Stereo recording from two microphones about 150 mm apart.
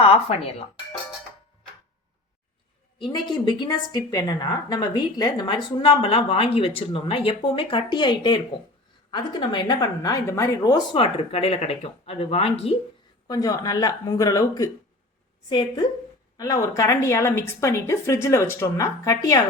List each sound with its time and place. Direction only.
0.0 s a woman's voice: 40° left (ahead or behind)
3.0 s a woman's voice: 30° left (ahead or behind)
10.9 s speech: 40° left (ahead or behind)
13.2 s a woman's voice: 25° left (ahead or behind)